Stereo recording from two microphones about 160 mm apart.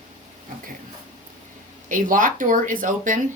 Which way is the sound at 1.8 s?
55° right (ahead or behind).